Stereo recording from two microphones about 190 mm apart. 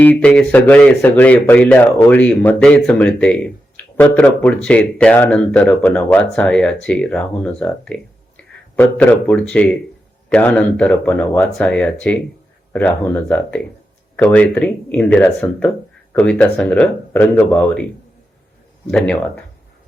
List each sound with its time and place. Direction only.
0.0 s speech: 10° left (ahead or behind)
18.9 s speech: 5° left (ahead or behind)